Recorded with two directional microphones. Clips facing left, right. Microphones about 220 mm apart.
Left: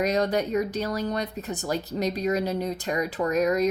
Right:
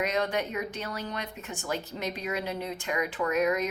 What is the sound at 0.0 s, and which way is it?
Speech, 35° left (ahead or behind).